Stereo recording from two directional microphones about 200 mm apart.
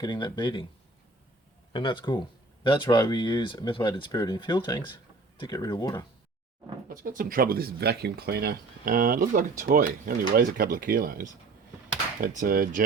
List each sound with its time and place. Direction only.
0.0 s speech: 20° left (ahead or behind)
1.7 s speech: 25° left (ahead or behind)
6.8 s speech: 45° right (ahead or behind)